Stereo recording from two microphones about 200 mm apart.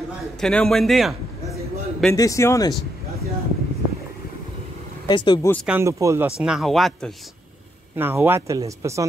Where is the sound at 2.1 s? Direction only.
15° left (ahead or behind).